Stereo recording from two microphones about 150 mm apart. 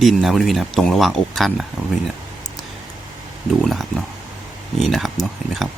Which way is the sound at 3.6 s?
Centre (ahead or behind).